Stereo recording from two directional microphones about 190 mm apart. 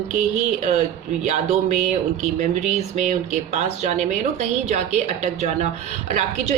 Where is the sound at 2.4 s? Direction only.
40° right (ahead or behind).